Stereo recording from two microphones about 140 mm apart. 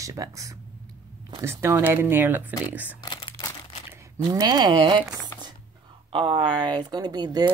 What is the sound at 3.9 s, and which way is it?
Speech, 20° right (ahead or behind).